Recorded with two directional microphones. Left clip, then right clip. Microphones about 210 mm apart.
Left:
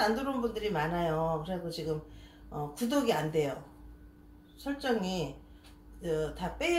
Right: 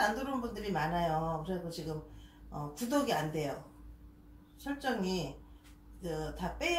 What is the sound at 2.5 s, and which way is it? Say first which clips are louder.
Speech: left 3 dB; 40° left (ahead or behind).